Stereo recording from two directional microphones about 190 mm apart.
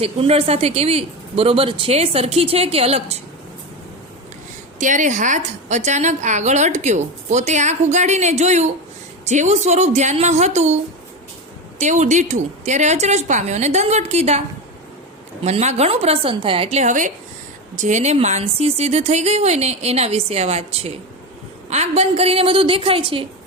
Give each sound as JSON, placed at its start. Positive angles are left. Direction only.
{"t": 0.0, "sound": "a woman's voice", "side_deg": -30}
{"t": 4.8, "sound": "a woman's voice", "side_deg": -40}
{"t": 11.8, "sound": "a woman's voice", "side_deg": -40}
{"t": 15.4, "sound": "a woman's voice", "side_deg": -35}